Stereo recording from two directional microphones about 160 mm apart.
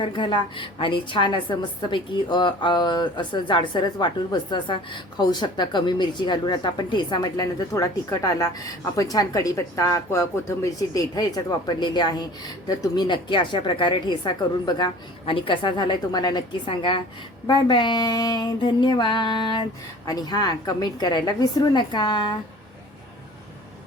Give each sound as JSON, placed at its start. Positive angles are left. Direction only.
{"t": 0.0, "sound": "a woman's voice", "side_deg": 30}